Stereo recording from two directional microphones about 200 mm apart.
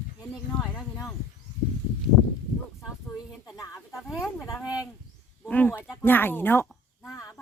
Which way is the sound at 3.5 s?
15° left (ahead or behind).